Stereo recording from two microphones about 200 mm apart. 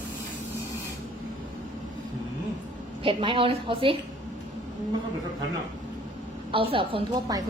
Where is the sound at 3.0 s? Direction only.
25° right (ahead or behind).